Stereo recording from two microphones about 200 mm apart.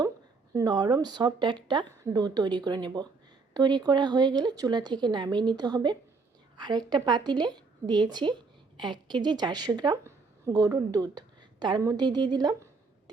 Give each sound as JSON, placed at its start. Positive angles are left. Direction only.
{"t": 0.5, "sound": "speech", "side_deg": -20}